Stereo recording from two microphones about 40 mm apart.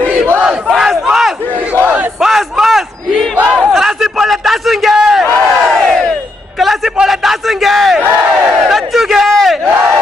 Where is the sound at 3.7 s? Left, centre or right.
Centre.